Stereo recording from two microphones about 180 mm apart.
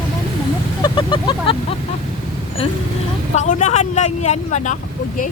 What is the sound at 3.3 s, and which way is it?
Speech, 40° left (ahead or behind).